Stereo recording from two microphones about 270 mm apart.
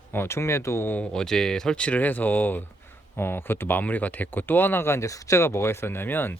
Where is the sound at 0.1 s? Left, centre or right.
Centre.